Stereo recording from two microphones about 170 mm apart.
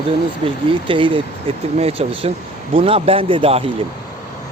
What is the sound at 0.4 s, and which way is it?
Speech, 30° right (ahead or behind).